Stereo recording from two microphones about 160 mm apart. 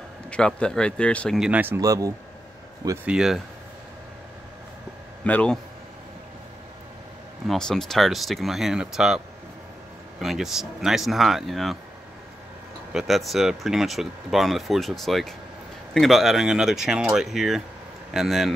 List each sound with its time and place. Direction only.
0.3 s speech: 5° left (ahead or behind)
1.4 s speech: 10° right (ahead or behind)
3.1 s speech: 5° right (ahead or behind)
5.2 s speech: 10° left (ahead or behind)
7.4 s speech: 5° left (ahead or behind)
10.2 s speech: centre (ahead or behind)
12.9 s speech: centre (ahead or behind)